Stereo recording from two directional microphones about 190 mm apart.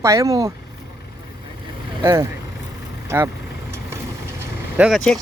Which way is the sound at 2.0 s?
15° right (ahead or behind).